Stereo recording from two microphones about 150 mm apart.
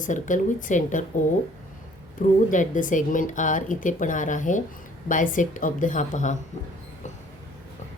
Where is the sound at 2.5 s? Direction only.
60° left (ahead or behind).